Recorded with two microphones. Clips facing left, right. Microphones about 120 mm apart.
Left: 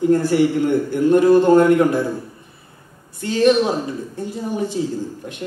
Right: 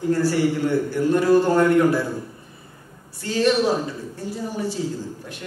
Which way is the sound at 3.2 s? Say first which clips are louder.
Left 4 dB; 20° left (ahead or behind).